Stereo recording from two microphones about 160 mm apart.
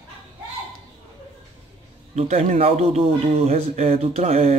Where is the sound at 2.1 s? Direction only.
45° right (ahead or behind).